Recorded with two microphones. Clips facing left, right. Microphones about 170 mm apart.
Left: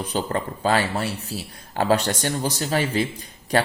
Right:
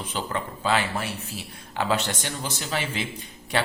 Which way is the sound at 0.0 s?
40° left (ahead or behind).